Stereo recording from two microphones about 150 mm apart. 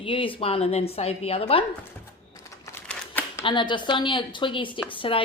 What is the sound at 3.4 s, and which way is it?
A woman's voice, 30° left (ahead or behind).